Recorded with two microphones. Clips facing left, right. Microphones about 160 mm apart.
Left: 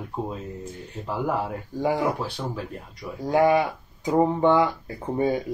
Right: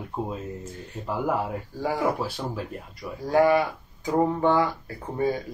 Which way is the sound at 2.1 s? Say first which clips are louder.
Even; 5° right (ahead or behind).